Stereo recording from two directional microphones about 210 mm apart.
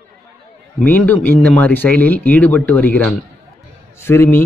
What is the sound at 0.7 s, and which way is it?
Speech, 10° left (ahead or behind).